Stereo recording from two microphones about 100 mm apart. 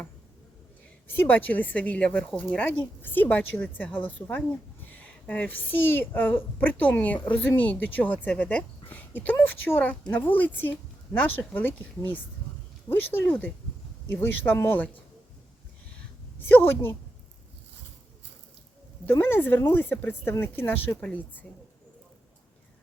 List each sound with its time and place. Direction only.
1.0 s a woman's voice: 20° left (ahead or behind)
16.4 s speech: 20° left (ahead or behind)
19.0 s a woman's voice: 20° left (ahead or behind)